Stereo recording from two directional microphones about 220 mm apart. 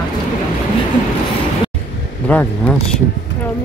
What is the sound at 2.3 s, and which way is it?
Speech, 5° left (ahead or behind).